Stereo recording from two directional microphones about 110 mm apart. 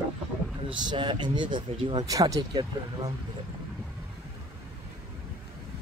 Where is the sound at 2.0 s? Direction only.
30° right (ahead or behind).